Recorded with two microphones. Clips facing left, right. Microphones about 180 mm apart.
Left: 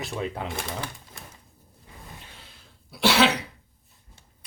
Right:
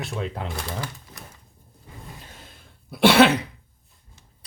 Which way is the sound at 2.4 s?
50° right (ahead or behind).